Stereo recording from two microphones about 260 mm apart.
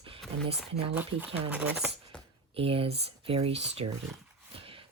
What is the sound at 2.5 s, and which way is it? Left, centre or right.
Speech, right.